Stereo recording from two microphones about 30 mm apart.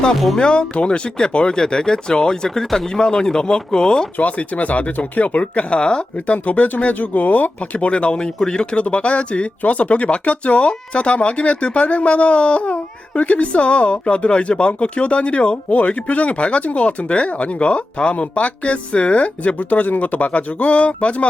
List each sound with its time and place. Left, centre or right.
0.3 s speech: left
1.5 s speech: left
4.2 s speech: left
5.8 s speech: left
6.1 s speech: left
8.8 s speech: left
19.5 s speech: left